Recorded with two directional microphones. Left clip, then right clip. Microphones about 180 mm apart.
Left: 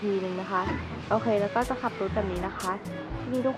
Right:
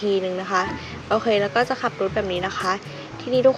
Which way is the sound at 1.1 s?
20° right (ahead or behind).